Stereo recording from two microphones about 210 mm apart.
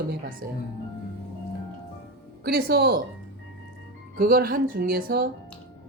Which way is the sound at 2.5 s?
50° right (ahead or behind).